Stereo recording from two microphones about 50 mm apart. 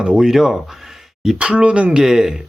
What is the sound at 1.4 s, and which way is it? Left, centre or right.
Speech, right.